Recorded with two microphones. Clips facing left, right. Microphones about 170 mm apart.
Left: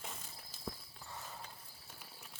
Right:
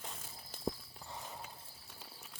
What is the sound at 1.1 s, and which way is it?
Horse, 20° right (ahead or behind).